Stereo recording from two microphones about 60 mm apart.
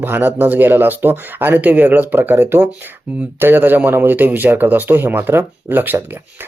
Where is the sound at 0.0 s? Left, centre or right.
Right.